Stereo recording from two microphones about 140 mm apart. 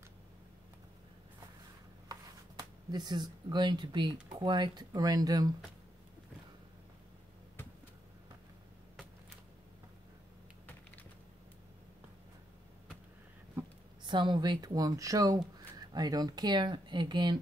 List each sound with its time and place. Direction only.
2.9 s speech: 30° right (ahead or behind)
14.0 s speech: 35° right (ahead or behind)